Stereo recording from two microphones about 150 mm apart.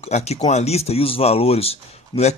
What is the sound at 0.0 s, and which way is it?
Speech, 45° left (ahead or behind).